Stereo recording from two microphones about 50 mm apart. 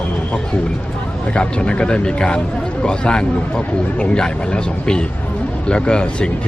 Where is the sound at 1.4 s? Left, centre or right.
Left.